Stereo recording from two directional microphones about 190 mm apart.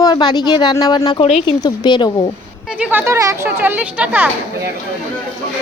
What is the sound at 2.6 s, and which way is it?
Speech, 5° right (ahead or behind).